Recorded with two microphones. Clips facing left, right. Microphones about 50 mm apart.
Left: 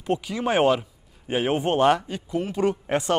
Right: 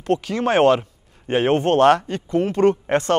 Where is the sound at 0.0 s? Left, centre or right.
Right.